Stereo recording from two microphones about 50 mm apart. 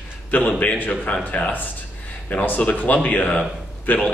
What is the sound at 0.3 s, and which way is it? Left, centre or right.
Speech, left.